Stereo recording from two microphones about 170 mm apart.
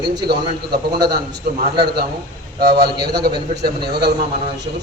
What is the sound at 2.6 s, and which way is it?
A man's voice, 70° right (ahead or behind).